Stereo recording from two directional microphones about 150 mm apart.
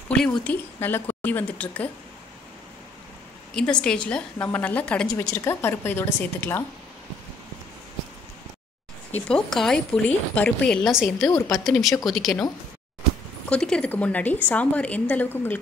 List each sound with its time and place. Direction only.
0.4 s a woman's voice: 10° left (ahead or behind)
3.5 s a woman's voice: 5° left (ahead or behind)
5.4 s a woman's voice: 15° left (ahead or behind)
9.1 s speech: 5° left (ahead or behind)
11.2 s a woman's voice: 20° left (ahead or behind)
11.6 s speech: centre (ahead or behind)
13.5 s a woman's voice: 5° left (ahead or behind)